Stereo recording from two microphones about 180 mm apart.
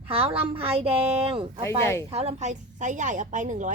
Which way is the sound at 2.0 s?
35° right (ahead or behind).